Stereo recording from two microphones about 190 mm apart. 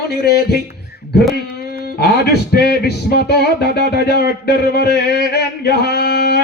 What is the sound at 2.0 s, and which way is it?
Speech, 55° left (ahead or behind).